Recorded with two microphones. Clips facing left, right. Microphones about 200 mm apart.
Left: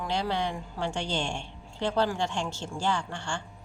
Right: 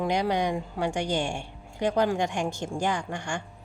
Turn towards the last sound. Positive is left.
turn(degrees=-15)  # may be behind; listen again after turning